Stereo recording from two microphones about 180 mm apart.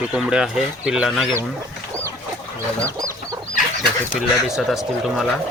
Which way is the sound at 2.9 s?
15° right (ahead or behind).